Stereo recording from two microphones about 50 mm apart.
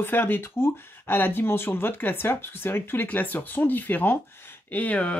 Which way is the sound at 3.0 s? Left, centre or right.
Left.